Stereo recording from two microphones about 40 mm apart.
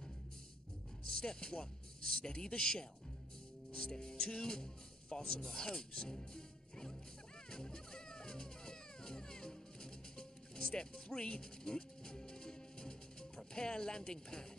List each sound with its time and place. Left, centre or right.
1.0 s speech: centre
2.2 s music: centre
5.1 s speech: centre
7.4 s music: centre